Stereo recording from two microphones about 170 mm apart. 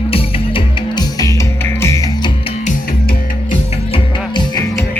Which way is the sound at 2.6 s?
50° left (ahead or behind).